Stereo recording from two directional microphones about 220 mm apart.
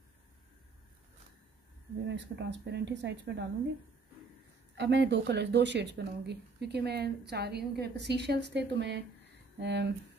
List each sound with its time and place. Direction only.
2.0 s speech: 55° right (ahead or behind)
4.7 s speech: 50° right (ahead or behind)